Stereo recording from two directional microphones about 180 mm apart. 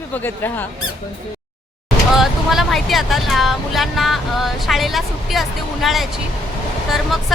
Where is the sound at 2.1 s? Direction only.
Centre (ahead or behind).